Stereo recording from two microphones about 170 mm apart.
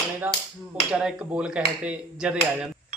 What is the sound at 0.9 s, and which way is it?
A man's voice, 5° right (ahead or behind).